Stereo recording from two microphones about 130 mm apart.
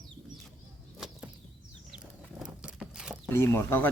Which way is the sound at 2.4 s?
5° right (ahead or behind).